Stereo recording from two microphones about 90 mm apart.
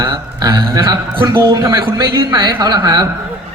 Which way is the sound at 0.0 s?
55° right (ahead or behind).